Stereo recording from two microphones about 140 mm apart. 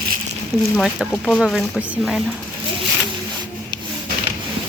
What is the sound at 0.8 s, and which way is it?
Speech, centre (ahead or behind).